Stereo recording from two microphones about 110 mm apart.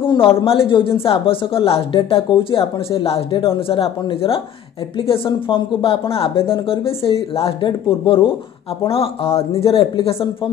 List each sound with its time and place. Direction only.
0.0 s a man's voice: 50° left (ahead or behind)
7.6 s a man's voice: 45° left (ahead or behind)
8.8 s speech: 60° left (ahead or behind)